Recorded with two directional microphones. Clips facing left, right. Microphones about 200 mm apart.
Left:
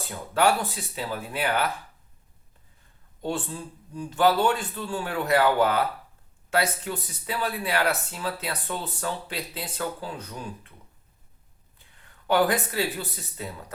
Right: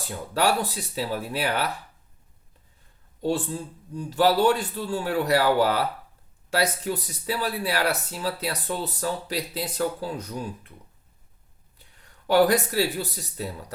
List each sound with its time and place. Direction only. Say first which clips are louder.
0.3 s speech: left 1 dB; 35° right (ahead or behind)
3.2 s speech: right 4 dB; 40° right (ahead or behind)
12.3 s speech: right 3 dB; 40° right (ahead or behind)